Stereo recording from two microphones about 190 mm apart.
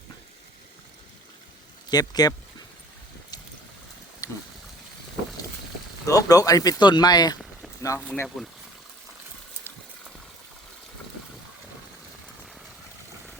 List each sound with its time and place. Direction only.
1.9 s speech: 20° left (ahead or behind)
4.2 s a sound: 20° left (ahead or behind)
6.1 s speech: 20° left (ahead or behind)